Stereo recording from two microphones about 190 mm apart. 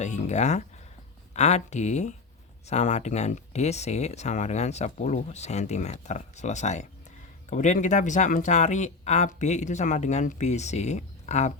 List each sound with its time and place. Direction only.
0.0 s speech: 40° left (ahead or behind)